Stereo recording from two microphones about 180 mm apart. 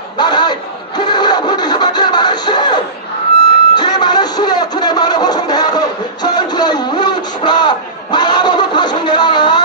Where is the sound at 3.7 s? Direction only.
25° left (ahead or behind).